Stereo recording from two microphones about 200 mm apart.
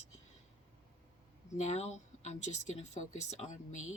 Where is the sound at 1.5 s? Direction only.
35° left (ahead or behind).